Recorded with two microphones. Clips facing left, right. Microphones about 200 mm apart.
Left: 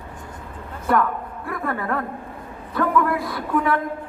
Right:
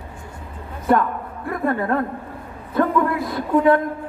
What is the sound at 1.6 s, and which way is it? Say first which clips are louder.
A man's voice: right 5 dB; 25° right (ahead or behind).